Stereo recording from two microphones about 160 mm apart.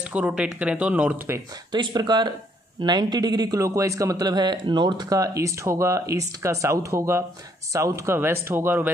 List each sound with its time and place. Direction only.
0.0 s speech: 5° right (ahead or behind)
1.7 s a man's voice: 25° right (ahead or behind)